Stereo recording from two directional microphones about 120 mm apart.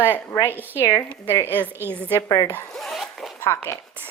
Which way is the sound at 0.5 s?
15° right (ahead or behind).